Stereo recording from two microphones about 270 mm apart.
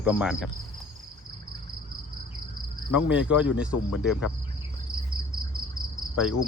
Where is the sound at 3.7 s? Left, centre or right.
Left.